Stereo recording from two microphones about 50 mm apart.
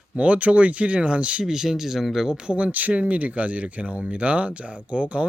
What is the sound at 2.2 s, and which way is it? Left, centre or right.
Speech, centre.